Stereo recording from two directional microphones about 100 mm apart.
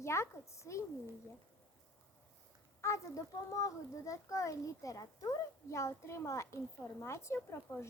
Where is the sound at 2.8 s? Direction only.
30° left (ahead or behind).